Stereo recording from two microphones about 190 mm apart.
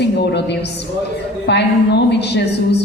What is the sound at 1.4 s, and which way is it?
A woman's voice, 65° left (ahead or behind).